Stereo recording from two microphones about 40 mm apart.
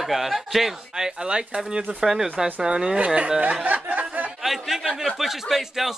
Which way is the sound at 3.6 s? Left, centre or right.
Right.